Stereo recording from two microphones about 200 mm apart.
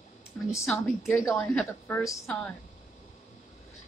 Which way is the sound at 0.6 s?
Centre (ahead or behind).